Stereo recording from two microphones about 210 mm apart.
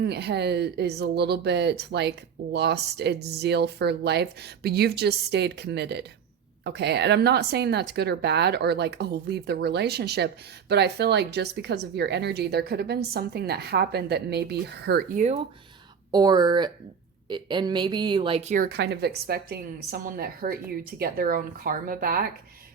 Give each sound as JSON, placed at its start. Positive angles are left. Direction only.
{"t": 0.0, "sound": "speech", "side_deg": -50}
{"t": 16.1, "sound": "speech", "side_deg": -20}